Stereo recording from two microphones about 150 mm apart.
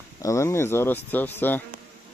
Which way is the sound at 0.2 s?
20° left (ahead or behind).